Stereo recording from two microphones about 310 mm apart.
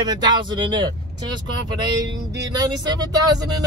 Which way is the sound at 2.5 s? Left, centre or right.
Centre.